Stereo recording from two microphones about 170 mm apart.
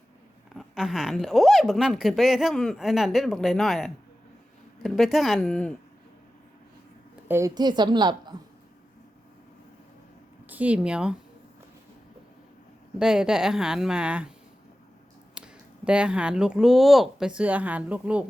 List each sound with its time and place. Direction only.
0.5 s speech: centre (ahead or behind)
7.3 s a woman's voice: 15° right (ahead or behind)
10.5 s speech: 10° right (ahead or behind)
13.0 s speech: 5° right (ahead or behind)
15.4 s speech: 5° right (ahead or behind)